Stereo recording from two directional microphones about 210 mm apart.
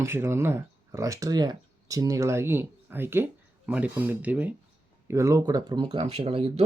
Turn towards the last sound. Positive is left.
turn(degrees=-25)  # may be behind; listen again after turning